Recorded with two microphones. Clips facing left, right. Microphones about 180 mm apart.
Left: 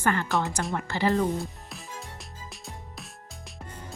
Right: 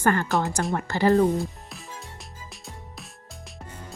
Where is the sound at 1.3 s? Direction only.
Centre (ahead or behind).